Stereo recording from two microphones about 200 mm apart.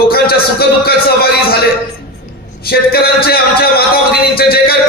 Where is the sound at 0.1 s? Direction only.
50° left (ahead or behind).